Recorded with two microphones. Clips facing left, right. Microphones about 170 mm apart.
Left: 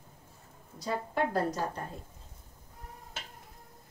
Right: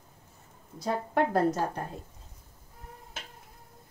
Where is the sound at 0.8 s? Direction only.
55° right (ahead or behind).